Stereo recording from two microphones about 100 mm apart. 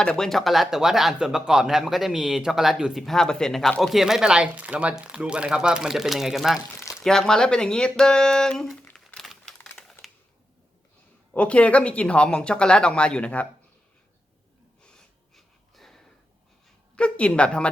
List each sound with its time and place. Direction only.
0.0 s speech: 5° left (ahead or behind)
8.8 s crumpling: 15° left (ahead or behind)
9.1 s a sound: centre (ahead or behind)
11.3 s speech: 10° left (ahead or behind)
14.8 s snort: 10° left (ahead or behind)
16.9 s a woman's voice: 10° left (ahead or behind)